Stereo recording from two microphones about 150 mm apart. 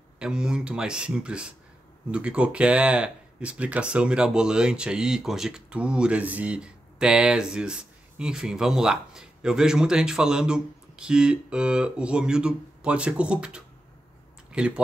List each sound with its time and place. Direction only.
0.2 s speech: 5° right (ahead or behind)